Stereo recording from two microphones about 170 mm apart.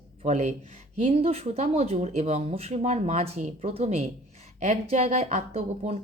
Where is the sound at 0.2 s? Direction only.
40° right (ahead or behind).